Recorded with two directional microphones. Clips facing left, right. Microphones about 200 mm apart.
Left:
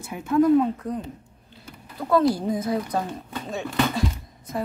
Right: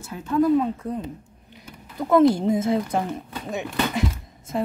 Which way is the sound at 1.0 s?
15° right (ahead or behind).